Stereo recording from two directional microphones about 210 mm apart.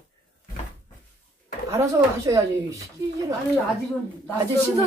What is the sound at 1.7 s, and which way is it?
Speech, 15° right (ahead or behind).